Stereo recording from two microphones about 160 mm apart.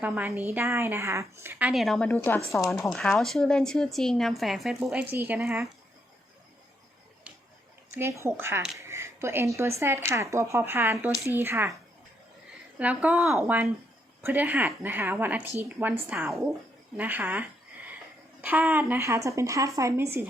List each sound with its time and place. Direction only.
0.0 s a woman's voice: 10° right (ahead or behind)
7.9 s a woman's voice: 15° right (ahead or behind)
12.8 s a woman's voice: 10° right (ahead or behind)
18.4 s a woman's voice: 10° right (ahead or behind)